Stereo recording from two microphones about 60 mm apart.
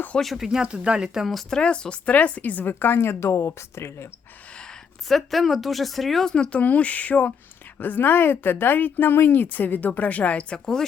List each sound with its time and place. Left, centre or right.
0.2 s speech: centre
0.4 s speech: centre
1.3 s speech: centre; by 4.1 s left
4.5 s a sound: centre
5.0 s speech: centre
6.3 s speech: centre
6.6 s a sound: left
7.8 s speech: left; by 10.8 s centre